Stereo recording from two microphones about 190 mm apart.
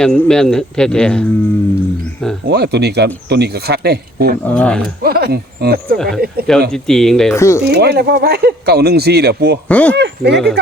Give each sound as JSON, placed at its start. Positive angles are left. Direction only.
{"t": 0.0, "sound": "speech", "side_deg": 5}
{"t": 2.5, "sound": "speech", "side_deg": -60}
{"t": 4.4, "sound": "speech", "side_deg": 5}
{"t": 5.0, "sound": "speech", "side_deg": -55}
{"t": 6.7, "sound": "speech", "side_deg": 0}
{"t": 7.3, "sound": "speech", "side_deg": 15}
{"t": 7.7, "sound": "speech", "side_deg": -60}
{"t": 9.6, "sound": "speech", "side_deg": 5}
{"t": 9.9, "sound": "speech", "side_deg": -65}